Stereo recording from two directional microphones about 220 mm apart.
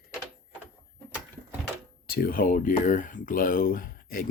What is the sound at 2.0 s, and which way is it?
Speech, 45° left (ahead or behind).